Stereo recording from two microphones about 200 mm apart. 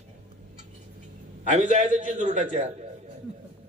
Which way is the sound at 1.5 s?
35° right (ahead or behind).